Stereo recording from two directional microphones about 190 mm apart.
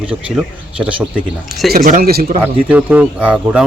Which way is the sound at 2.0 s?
55° right (ahead or behind).